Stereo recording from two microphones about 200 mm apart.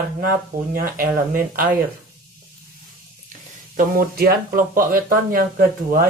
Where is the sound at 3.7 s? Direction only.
45° right (ahead or behind).